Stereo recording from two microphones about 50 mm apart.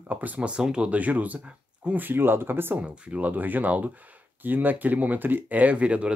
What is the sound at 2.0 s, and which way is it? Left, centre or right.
Speech, right.